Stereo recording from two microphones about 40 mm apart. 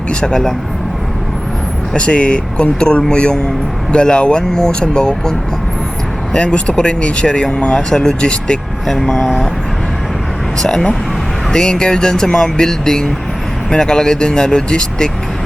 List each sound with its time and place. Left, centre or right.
0.1 s speech: left
1.9 s speech: left
6.3 s speech: left
7.9 s speech: centre
9.2 s speech: centre
10.6 s speech: centre